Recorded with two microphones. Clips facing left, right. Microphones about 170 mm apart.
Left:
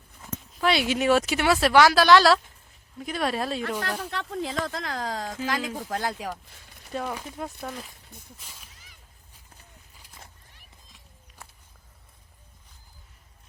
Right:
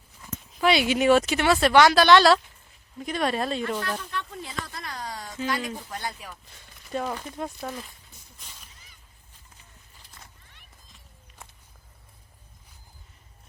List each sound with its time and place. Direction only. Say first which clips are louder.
0.6 s speech: right 2 dB; centre (ahead or behind)
3.6 s speech: even; 80° left
6.9 s speech: right 2 dB; 5° left (ahead or behind)
8.4 s a sound: left 1 dB; 5° left (ahead or behind)